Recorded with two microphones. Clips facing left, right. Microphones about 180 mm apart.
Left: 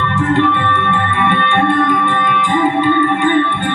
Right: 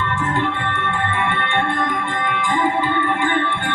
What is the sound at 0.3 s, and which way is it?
Music, 70° left (ahead or behind).